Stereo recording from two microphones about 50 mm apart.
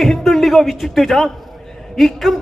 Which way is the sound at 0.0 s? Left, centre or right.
Centre.